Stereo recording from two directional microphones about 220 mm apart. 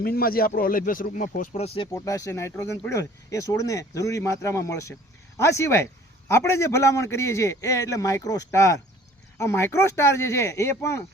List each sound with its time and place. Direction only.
0.0 s speech: 45° left (ahead or behind); by 1.9 s 25° left (ahead or behind)
1.9 s a man's voice: 15° left (ahead or behind)